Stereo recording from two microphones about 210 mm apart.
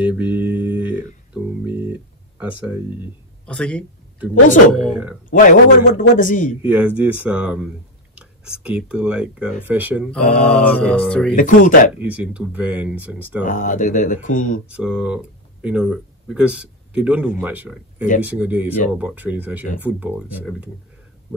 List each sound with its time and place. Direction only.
0.0 s mantra: 5° right (ahead or behind)
0.7 s a sound: 5° right (ahead or behind)
3.4 s speech: 5° left (ahead or behind)
5.3 s a man's voice: 40° left (ahead or behind)
6.6 s speech: 10° right (ahead or behind)
10.5 s speech: 5° left (ahead or behind)
11.3 s a man's voice: 40° left (ahead or behind)
12.0 s speech: 5° right (ahead or behind)
13.4 s a man's voice: 40° left (ahead or behind)
14.7 s a man's voice: 5° right (ahead or behind)